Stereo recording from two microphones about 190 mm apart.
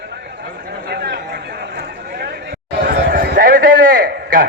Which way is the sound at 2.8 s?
55° right (ahead or behind).